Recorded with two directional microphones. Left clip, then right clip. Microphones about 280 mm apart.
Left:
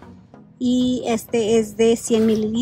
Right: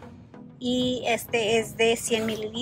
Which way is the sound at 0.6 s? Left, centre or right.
Centre.